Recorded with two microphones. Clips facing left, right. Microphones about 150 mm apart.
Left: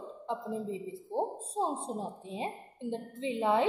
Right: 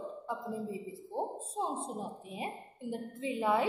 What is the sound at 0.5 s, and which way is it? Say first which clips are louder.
A woman's voice: left 2 dB; 25° left (ahead or behind).